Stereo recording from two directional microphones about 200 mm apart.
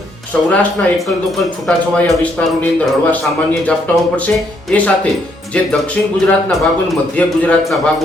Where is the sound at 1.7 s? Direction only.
5° left (ahead or behind).